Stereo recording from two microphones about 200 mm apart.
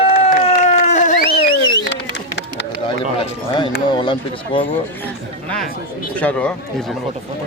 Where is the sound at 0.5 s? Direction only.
35° left (ahead or behind).